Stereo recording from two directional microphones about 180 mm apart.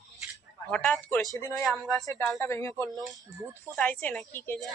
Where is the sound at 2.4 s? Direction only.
15° left (ahead or behind).